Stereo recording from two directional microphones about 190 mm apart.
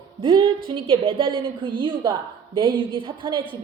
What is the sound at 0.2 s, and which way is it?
A woman's voice, 25° right (ahead or behind).